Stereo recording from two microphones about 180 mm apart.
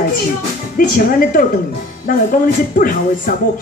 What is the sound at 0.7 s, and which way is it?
A woman's voice, 50° left (ahead or behind).